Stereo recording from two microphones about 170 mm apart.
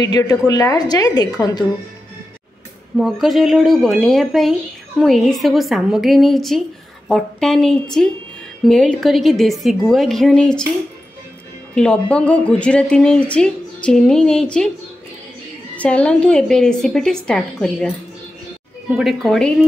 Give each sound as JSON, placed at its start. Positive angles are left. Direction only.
{"t": 0.0, "sound": "a woman's voice", "side_deg": 20}
{"t": 3.0, "sound": "speech", "side_deg": 0}
{"t": 11.7, "sound": "speech", "side_deg": 5}
{"t": 15.7, "sound": "speech", "side_deg": 10}